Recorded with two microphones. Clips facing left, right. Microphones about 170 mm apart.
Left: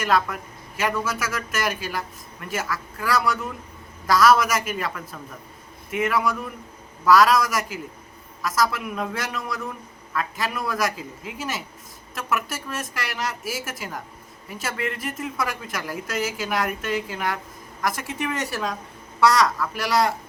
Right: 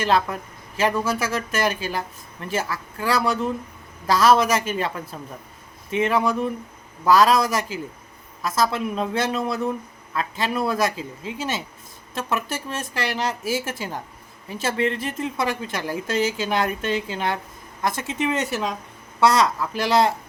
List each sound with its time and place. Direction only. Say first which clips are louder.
0.0 s speech: right 1 dB; 30° right (ahead or behind)